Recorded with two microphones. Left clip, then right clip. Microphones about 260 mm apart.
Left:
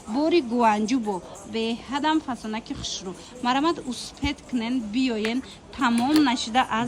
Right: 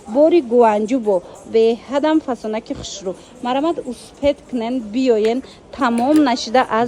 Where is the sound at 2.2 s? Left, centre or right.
Right.